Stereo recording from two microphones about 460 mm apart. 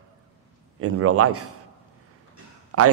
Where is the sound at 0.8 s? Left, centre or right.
Right.